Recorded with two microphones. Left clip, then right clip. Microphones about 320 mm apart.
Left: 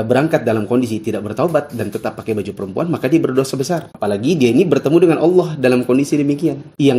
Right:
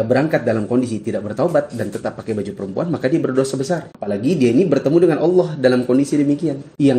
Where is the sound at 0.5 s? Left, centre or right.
Left.